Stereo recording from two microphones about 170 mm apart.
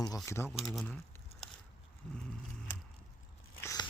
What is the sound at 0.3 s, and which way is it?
Speech, 15° left (ahead or behind).